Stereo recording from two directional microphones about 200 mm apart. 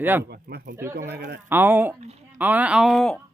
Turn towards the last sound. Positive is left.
turn(degrees=0)  # may be behind; listen again after turning